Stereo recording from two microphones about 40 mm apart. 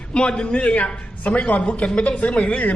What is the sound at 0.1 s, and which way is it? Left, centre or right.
A man's voice, left.